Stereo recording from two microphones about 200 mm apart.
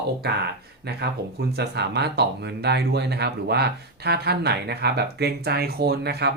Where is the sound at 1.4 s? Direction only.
55° right (ahead or behind).